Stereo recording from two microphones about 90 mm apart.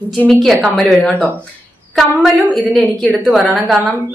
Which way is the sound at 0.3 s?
5° left (ahead or behind).